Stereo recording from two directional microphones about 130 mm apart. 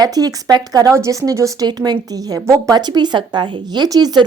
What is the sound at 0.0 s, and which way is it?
A woman's voice, 30° right (ahead or behind).